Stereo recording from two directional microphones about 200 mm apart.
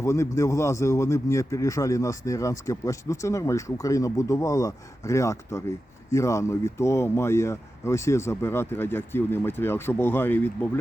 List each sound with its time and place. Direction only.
0.0 s a man's voice: 15° left (ahead or behind)